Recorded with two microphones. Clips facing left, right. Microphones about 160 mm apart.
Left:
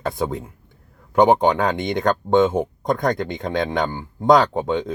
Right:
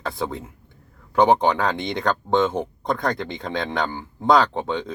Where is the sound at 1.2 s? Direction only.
15° left (ahead or behind).